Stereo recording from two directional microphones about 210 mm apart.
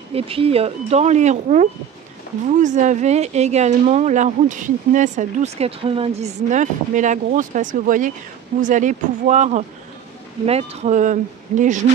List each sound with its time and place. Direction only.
0.1 s speech: 25° right (ahead or behind)